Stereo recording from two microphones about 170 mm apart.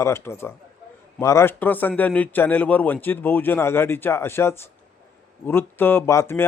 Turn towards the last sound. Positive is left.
turn(degrees=15)  # may be behind; listen again after turning